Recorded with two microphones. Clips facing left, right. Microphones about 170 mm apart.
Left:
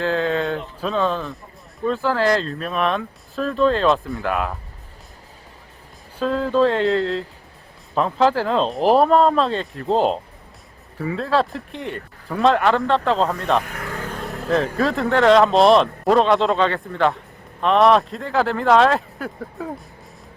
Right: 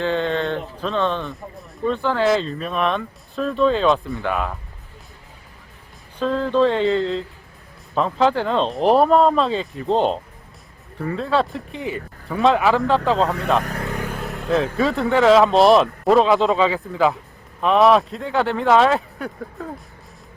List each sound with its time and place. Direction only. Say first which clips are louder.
0.0 s a man's voice: even; centre (ahead or behind)
6.1 s a man's voice: even; 5° left (ahead or behind)